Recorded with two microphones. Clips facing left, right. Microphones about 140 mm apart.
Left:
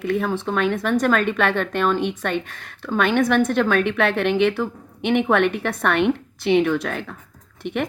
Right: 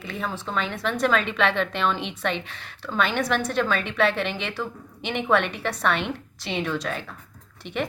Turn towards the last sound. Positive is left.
turn(degrees=55)  # may be behind; listen again after turning